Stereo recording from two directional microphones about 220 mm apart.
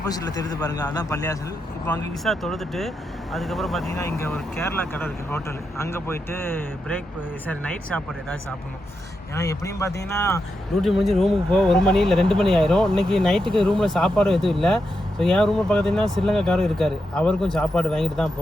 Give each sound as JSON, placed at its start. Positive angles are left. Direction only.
{"t": 0.0, "sound": "speech", "side_deg": 15}
{"t": 2.2, "sound": "speech", "side_deg": 0}
{"t": 3.9, "sound": "speech", "side_deg": 15}
{"t": 9.3, "sound": "speech", "side_deg": 15}
{"t": 10.8, "sound": "speech", "side_deg": 0}